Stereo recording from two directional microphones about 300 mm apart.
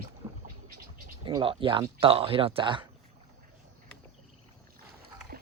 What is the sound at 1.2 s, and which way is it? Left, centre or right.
Speech, centre.